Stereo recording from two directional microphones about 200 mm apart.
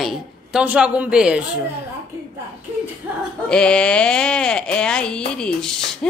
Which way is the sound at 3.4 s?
5° left (ahead or behind).